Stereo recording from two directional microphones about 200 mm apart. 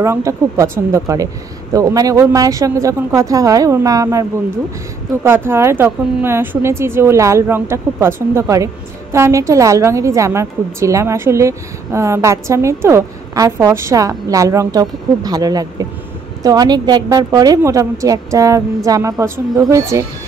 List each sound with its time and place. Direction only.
0.0 s a woman's voice: 15° right (ahead or behind)